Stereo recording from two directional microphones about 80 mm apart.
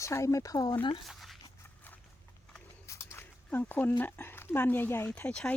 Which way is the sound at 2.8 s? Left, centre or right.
Left.